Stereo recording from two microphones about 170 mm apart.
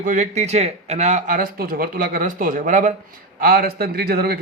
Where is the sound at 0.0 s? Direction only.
45° right (ahead or behind).